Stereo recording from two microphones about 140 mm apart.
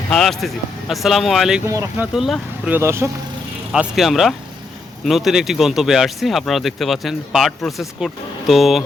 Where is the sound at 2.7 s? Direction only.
20° right (ahead or behind).